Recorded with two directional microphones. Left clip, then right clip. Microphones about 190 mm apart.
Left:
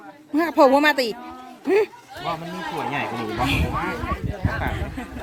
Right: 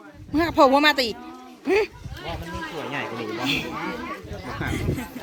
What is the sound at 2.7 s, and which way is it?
Speech, 60° left (ahead or behind).